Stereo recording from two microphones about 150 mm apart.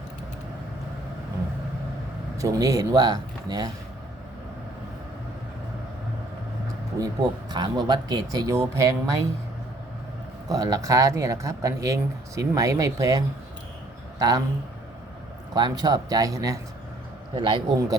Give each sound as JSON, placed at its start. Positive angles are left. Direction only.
{"t": 2.4, "sound": "speech", "side_deg": -20}
{"t": 7.0, "sound": "speech", "side_deg": -30}
{"t": 10.5, "sound": "a man's voice", "side_deg": -25}
{"t": 15.5, "sound": "speech", "side_deg": -25}
{"t": 17.3, "sound": "a man's voice", "side_deg": -35}